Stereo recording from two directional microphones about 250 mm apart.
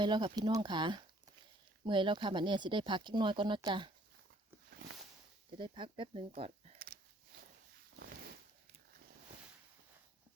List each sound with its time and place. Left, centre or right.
0.0 s speech: centre
5.5 s speech: centre
6.7 s a sound: right